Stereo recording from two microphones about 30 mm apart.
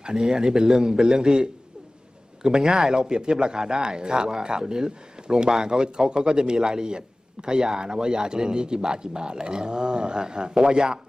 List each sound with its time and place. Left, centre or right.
0.4 s speech: right